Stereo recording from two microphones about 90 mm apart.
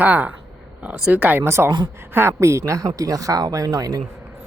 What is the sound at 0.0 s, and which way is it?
Speech, 20° right (ahead or behind).